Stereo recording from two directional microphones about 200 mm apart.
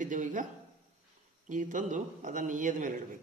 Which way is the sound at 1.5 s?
40° right (ahead or behind).